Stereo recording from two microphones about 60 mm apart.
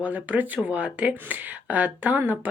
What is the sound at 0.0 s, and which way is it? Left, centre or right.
Speech, right.